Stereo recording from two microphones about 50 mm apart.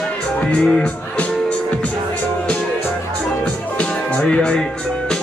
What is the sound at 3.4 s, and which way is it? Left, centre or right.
Music, left.